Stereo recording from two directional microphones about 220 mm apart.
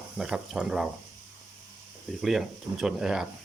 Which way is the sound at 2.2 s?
Centre (ahead or behind).